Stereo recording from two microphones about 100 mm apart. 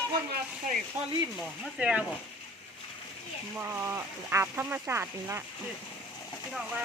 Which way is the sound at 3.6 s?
20° right (ahead or behind).